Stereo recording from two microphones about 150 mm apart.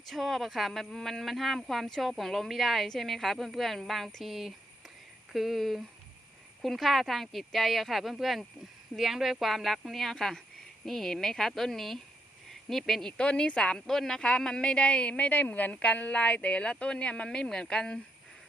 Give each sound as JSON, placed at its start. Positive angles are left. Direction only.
{"t": 0.1, "sound": "a woman's voice", "side_deg": 0}